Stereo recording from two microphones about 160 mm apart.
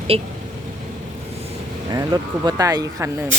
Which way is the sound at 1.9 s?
25° right (ahead or behind).